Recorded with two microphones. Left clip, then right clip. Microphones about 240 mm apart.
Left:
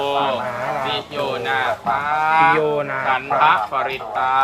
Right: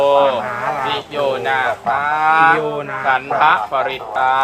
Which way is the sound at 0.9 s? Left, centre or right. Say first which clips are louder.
Right 4 dB; centre.